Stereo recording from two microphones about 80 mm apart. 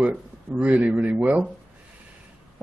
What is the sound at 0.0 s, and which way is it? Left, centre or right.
Speech, centre.